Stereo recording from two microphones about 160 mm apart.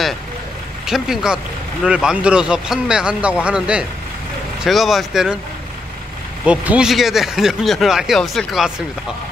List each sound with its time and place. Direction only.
0.8 s speech: centre (ahead or behind)
6.4 s speech: 10° right (ahead or behind)